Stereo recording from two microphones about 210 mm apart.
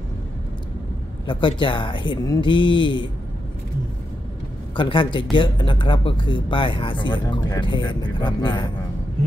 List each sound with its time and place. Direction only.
1.2 s speech: 20° left (ahead or behind)
4.7 s speech: 25° left (ahead or behind)